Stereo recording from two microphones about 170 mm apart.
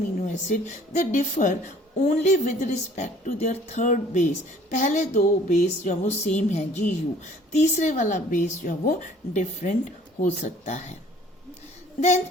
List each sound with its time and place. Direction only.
0.2 s a woman's voice: 45° left (ahead or behind)
11.9 s speech: 40° left (ahead or behind)